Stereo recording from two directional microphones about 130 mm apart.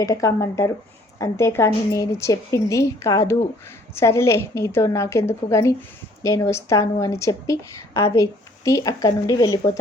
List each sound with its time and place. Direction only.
0.0 s a woman's voice: 25° left (ahead or behind)